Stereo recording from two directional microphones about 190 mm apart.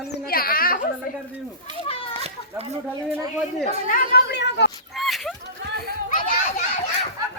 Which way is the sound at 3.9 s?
60° left (ahead or behind).